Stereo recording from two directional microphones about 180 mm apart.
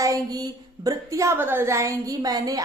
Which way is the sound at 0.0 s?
20° right (ahead or behind).